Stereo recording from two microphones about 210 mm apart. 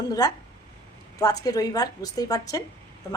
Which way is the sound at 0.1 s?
20° left (ahead or behind).